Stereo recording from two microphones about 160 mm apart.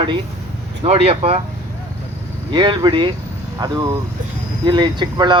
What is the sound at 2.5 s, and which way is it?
Speech, 30° right (ahead or behind).